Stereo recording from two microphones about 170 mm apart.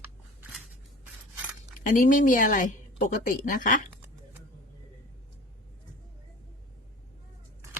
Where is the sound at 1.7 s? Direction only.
50° left (ahead or behind).